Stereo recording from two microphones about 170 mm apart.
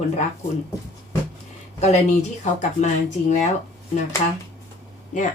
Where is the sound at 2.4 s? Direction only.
45° left (ahead or behind).